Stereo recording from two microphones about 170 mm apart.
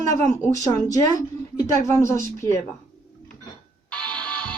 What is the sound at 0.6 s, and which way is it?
A woman's voice, 20° left (ahead or behind).